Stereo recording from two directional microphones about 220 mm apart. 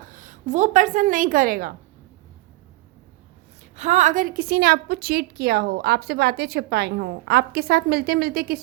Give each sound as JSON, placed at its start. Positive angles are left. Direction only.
{"t": 0.1, "sound": "a woman's voice", "side_deg": -35}
{"t": 3.8, "sound": "a woman's voice", "side_deg": -30}